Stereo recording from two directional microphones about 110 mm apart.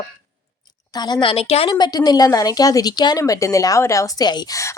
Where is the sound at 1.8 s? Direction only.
40° left (ahead or behind).